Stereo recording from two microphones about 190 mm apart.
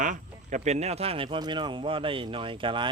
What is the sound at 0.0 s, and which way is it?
A man's voice, 40° right (ahead or behind).